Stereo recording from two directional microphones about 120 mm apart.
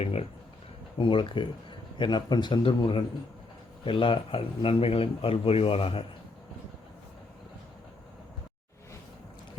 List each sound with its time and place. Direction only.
0.0 s speech: 55° left (ahead or behind)
0.9 s a man's voice: 45° left (ahead or behind)